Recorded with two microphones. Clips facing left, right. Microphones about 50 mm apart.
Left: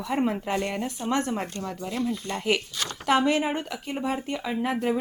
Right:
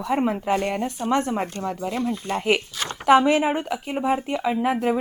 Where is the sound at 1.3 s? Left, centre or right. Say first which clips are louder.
Right 5 dB; right.